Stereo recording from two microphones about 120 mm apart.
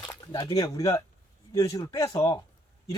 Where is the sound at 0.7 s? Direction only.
25° left (ahead or behind).